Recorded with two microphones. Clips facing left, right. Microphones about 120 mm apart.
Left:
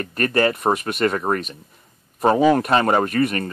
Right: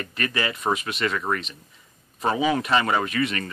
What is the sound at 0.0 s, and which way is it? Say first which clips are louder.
Speech: left 8 dB; 45° left (ahead or behind).